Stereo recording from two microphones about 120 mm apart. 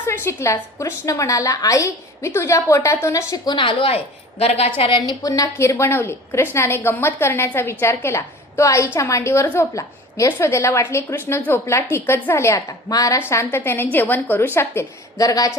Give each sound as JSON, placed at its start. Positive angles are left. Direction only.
{"t": 0.1, "sound": "a woman's voice", "side_deg": 20}
{"t": 4.8, "sound": "a woman's voice", "side_deg": 45}
{"t": 5.2, "sound": "a woman's voice", "side_deg": 25}
{"t": 15.2, "sound": "a woman's voice", "side_deg": 30}